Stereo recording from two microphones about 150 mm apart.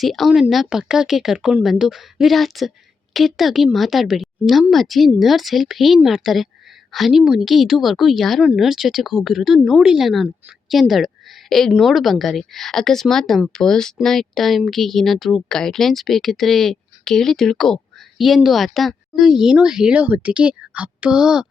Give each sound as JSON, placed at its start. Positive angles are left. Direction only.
{"t": 0.0, "sound": "a woman's voice", "side_deg": 0}